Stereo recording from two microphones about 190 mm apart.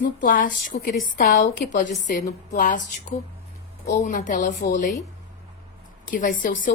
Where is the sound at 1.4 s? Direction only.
40° left (ahead or behind).